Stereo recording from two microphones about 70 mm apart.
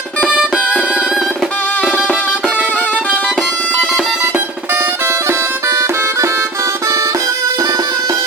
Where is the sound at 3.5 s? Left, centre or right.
Left.